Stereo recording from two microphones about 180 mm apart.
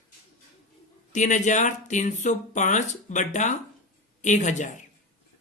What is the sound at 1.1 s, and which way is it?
Speech, 40° left (ahead or behind).